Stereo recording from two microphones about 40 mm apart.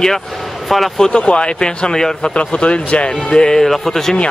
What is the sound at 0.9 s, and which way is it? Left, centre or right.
Speech, centre.